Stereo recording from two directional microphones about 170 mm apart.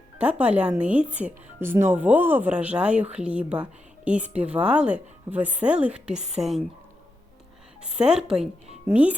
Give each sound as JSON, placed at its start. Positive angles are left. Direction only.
{"t": 0.2, "sound": "speech", "side_deg": -5}
{"t": 7.8, "sound": "a woman's voice", "side_deg": -5}